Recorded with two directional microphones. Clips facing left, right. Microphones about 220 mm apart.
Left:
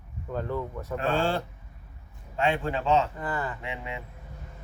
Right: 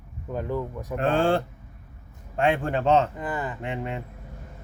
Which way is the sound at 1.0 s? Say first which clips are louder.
Right 5 dB; 55° right (ahead or behind).